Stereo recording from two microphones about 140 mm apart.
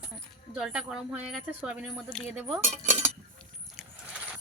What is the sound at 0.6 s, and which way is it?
A woman's voice, 5° right (ahead or behind).